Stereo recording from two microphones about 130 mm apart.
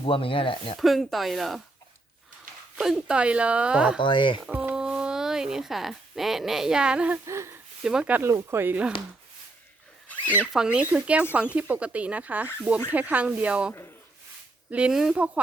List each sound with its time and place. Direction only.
0.0 s speech: 45° left (ahead or behind)
0.8 s speech: centre (ahead or behind)
2.7 s speech: 5° right (ahead or behind)
4.0 s speech: 40° left (ahead or behind)
4.4 s speech: 10° right (ahead or behind)
7.3 s speech: 20° right (ahead or behind)
7.9 s speech: 10° right (ahead or behind)
10.1 s zipper: 10° left (ahead or behind)
10.5 s speech: 5° right (ahead or behind)